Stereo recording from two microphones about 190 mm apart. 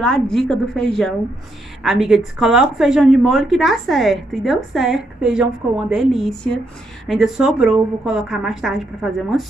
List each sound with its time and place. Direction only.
0.0 s speech: 5° left (ahead or behind)